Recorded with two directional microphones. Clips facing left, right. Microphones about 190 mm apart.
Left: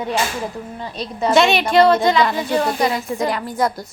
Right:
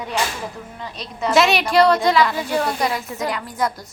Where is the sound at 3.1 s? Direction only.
30° left (ahead or behind).